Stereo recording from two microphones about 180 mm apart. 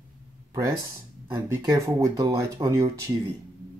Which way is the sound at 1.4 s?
15° right (ahead or behind).